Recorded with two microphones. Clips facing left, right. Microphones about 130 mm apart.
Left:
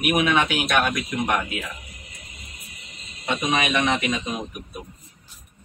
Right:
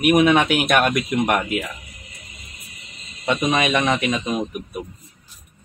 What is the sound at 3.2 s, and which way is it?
Speech, 50° right (ahead or behind).